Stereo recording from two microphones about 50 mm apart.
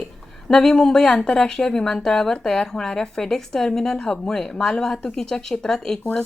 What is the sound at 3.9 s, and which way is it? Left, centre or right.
Speech, centre.